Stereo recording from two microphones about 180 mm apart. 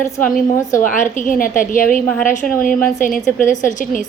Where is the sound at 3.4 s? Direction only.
45° left (ahead or behind).